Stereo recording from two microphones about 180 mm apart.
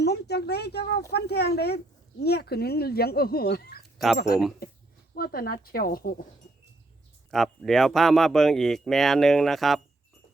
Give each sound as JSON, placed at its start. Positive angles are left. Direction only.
{"t": 0.0, "sound": "a sound", "side_deg": 65}
{"t": 1.1, "sound": "speech", "side_deg": 65}
{"t": 3.9, "sound": "speech", "side_deg": 0}
{"t": 5.1, "sound": "speech", "side_deg": 55}
{"t": 7.3, "sound": "speech", "side_deg": 0}